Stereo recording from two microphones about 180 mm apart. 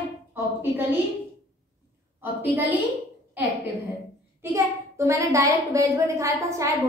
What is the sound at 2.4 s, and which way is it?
Speech, 10° right (ahead or behind).